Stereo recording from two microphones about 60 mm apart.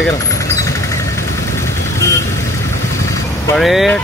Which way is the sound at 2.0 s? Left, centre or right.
Left.